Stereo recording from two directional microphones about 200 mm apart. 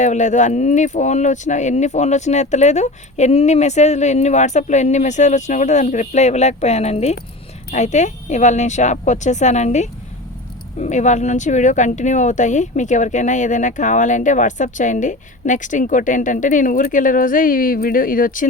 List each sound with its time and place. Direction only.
0.0 s speech: 35° left (ahead or behind)